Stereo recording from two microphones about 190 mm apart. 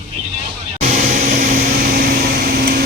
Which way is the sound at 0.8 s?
40° right (ahead or behind).